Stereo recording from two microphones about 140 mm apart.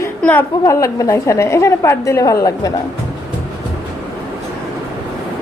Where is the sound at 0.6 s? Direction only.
20° left (ahead or behind).